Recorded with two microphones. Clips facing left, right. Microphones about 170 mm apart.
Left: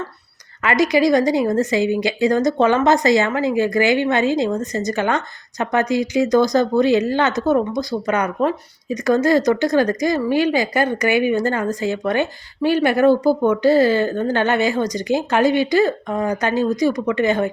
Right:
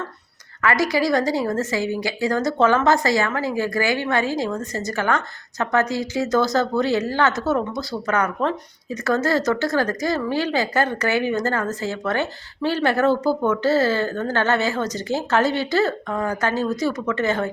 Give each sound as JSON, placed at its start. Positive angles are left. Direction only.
{"t": 0.6, "sound": "a woman's voice", "side_deg": 20}